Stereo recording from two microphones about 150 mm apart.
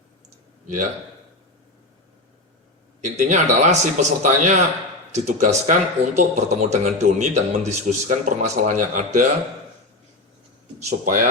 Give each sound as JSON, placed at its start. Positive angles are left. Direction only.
{"t": 3.0, "sound": "speech", "side_deg": -50}
{"t": 10.8, "sound": "speech", "side_deg": -60}